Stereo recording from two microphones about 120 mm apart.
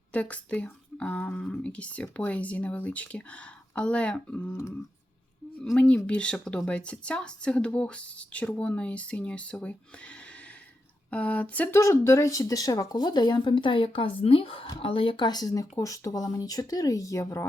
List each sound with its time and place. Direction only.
0.1 s speech: 10° left (ahead or behind)
5.6 s speech: 10° left (ahead or behind)
11.8 s speech: 25° left (ahead or behind)